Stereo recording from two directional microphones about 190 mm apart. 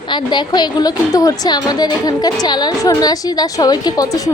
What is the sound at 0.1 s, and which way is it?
A woman's voice, 25° left (ahead or behind).